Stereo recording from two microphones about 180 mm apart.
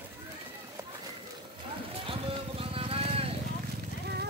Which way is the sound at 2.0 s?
30° right (ahead or behind).